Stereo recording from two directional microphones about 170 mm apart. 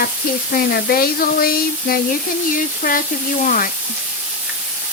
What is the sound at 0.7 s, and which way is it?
Sizzle, 60° left (ahead or behind).